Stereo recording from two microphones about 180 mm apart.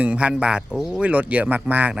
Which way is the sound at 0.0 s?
5° right (ahead or behind).